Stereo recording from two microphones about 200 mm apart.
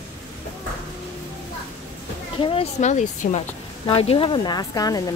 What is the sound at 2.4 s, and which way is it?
Speech, 30° left (ahead or behind).